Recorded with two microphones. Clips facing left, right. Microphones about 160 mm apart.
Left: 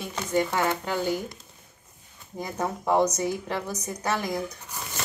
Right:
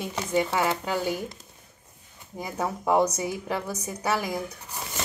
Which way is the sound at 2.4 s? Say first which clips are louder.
Even; 5° right (ahead or behind).